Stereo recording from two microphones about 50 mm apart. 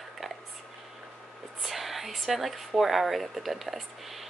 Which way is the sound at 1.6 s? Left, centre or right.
Centre.